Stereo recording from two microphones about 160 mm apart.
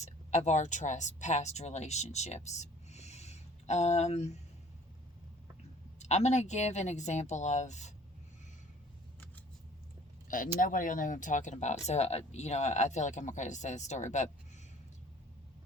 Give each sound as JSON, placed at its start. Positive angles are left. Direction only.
{"t": 0.0, "sound": "speech", "side_deg": 45}
{"t": 6.0, "sound": "speech", "side_deg": 45}
{"t": 10.2, "sound": "speech", "side_deg": 55}